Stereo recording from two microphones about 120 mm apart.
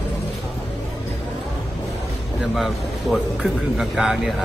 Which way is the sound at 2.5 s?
Centre (ahead or behind).